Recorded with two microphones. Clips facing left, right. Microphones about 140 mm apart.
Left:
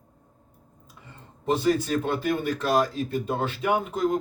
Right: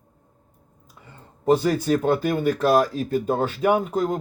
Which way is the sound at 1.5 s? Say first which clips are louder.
Right 4 dB; 45° right (ahead or behind).